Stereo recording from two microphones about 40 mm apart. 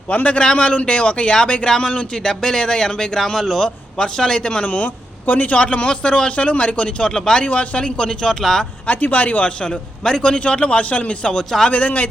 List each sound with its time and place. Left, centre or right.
0.1 s a man's voice: left
4.6 s speech: left
5.5 s a man's voice: left
7.0 s a man's voice: centre
7.4 s speech: left
8.3 s a man's voice: centre
8.9 s speech: left
9.6 s a man's voice: centre
10.2 s a man's voice: left
11.3 s a man's voice: centre